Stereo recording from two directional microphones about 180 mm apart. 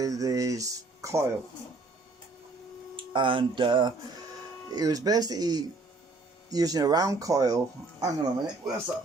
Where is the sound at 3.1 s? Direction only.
30° right (ahead or behind).